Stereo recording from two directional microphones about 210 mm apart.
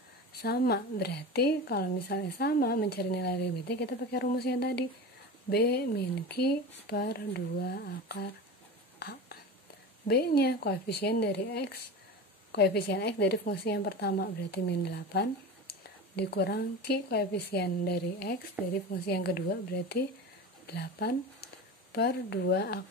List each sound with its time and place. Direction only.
0.3 s a woman's voice: 50° left (ahead or behind)
10.0 s a woman's voice: 50° left (ahead or behind)
18.6 s speech: 10° right (ahead or behind)
19.0 s a woman's voice: 50° left (ahead or behind)
20.6 s a woman's voice: 50° left (ahead or behind)